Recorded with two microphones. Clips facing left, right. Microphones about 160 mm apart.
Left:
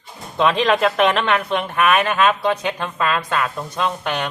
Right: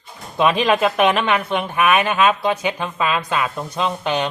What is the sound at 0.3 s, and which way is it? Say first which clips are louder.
Speech: even; 10° right (ahead or behind).